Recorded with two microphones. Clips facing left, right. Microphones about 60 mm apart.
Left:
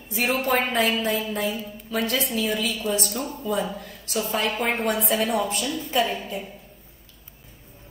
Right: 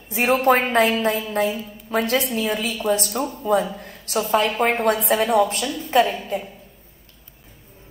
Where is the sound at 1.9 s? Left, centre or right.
Right.